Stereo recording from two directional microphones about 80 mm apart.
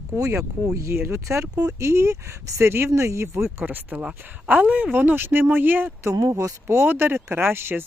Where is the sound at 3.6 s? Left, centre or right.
Right.